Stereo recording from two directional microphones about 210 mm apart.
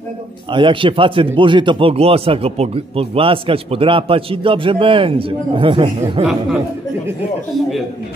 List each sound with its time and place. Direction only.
0.5 s speech: 25° right (ahead or behind)